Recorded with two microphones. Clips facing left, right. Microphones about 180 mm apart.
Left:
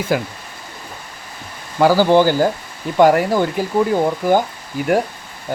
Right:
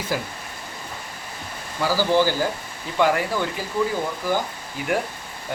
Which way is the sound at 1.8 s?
60° left (ahead or behind).